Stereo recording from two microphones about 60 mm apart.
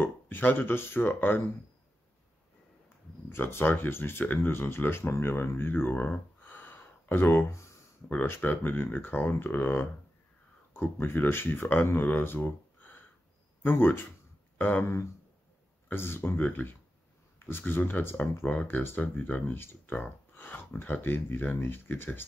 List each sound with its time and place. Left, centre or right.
0.0 s speech: left
3.3 s speech: left
15.9 s speech: left
18.8 s speech: left
19.4 s speech: left
20.0 s a sound: left
20.8 s speech: left